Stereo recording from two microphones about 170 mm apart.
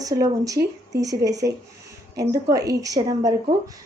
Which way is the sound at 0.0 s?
20° right (ahead or behind).